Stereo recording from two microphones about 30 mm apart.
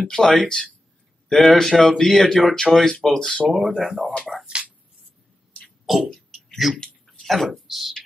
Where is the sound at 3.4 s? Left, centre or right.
Centre.